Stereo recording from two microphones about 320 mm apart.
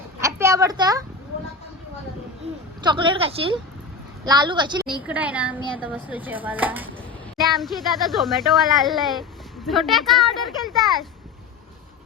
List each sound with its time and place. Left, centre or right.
0.2 s a sound: centre
2.8 s a woman's voice: centre
4.9 s chopping: centre